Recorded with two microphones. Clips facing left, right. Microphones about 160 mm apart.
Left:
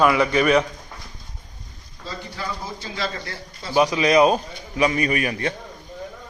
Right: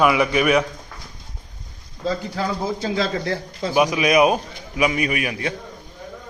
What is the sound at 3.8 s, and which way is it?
A man's voice, 15° right (ahead or behind).